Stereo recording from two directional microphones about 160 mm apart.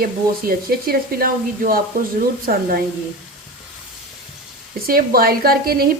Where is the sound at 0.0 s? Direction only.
65° right (ahead or behind).